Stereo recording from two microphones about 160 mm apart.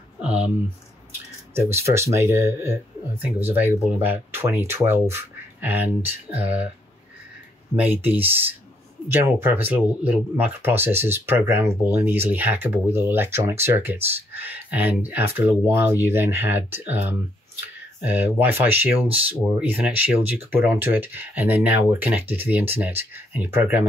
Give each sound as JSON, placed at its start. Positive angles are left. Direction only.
{"t": 0.2, "sound": "a sound", "side_deg": -5}
{"t": 1.5, "sound": "speech", "side_deg": -15}
{"t": 7.7, "sound": "speech", "side_deg": -10}